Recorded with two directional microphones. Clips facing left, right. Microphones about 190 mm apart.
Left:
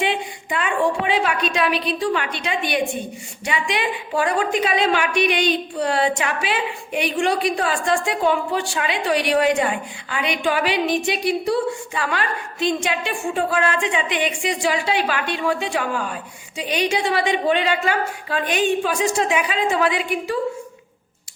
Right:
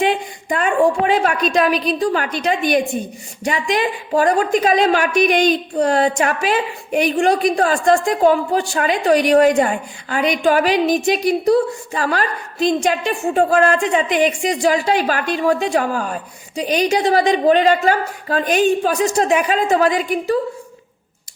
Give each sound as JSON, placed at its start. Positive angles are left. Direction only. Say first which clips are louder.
{"t": 0.0, "sound": "a woman's voice", "louder": "right 5 dB", "side_deg": -45}